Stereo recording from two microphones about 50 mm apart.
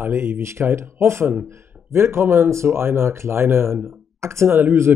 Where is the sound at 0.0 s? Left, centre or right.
Right.